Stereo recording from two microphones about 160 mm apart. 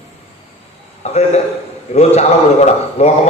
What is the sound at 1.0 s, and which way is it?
A man's voice, 40° left (ahead or behind).